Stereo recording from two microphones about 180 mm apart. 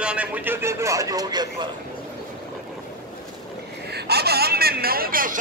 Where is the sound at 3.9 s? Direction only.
65° right (ahead or behind).